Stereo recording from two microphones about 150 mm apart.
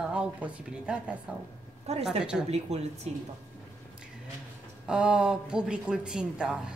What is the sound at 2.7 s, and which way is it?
Speech, 45° right (ahead or behind).